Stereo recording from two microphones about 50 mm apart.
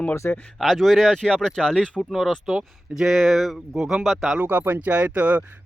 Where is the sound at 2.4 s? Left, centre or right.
Centre.